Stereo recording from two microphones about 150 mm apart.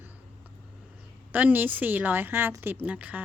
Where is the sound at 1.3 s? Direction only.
10° right (ahead or behind).